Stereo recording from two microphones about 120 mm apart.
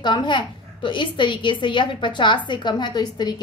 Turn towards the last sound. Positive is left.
turn(degrees=35)  # may be behind; listen again after turning